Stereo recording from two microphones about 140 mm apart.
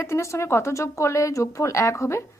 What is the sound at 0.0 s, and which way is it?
Speech, 20° left (ahead or behind).